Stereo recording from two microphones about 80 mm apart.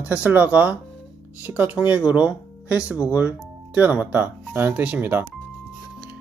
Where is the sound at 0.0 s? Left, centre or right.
Centre.